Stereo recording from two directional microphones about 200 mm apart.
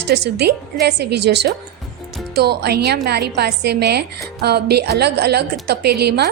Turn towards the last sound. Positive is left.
turn(degrees=-55)  # may be behind; listen again after turning